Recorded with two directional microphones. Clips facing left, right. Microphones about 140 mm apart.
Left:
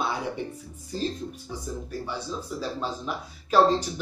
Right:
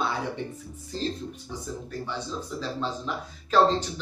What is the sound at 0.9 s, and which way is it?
Speech, 10° left (ahead or behind).